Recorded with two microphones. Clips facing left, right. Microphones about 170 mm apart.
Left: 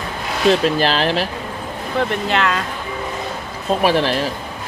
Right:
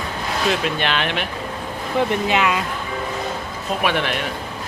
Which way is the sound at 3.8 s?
35° left (ahead or behind).